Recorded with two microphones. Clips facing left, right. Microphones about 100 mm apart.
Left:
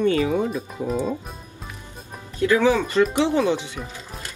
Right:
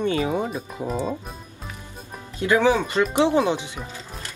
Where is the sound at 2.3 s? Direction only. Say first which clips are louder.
Left 1 dB; 20° right (ahead or behind).